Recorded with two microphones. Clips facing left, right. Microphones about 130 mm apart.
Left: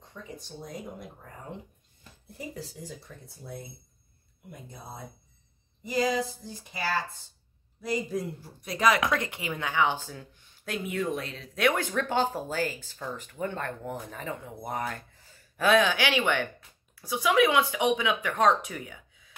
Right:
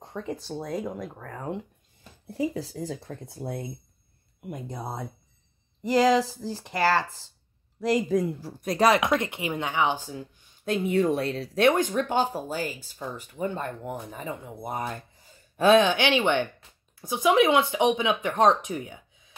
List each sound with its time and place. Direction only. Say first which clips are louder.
0.0 s speech: right 10 dB; 90° right
8.6 s speech: right 4 dB; 35° right (ahead or behind)
9.0 s speech: right 3 dB; 20° right (ahead or behind)
10.6 s speech: right 8 dB; 25° right (ahead or behind)
11.7 s speech: right 4 dB; 15° right (ahead or behind)